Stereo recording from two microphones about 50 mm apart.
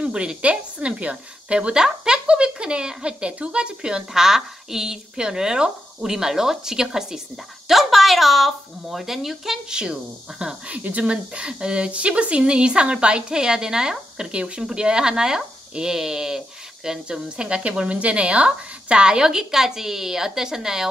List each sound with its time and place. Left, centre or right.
0.0 s a woman's voice: centre
10.4 s speech: right; by 20.8 s centre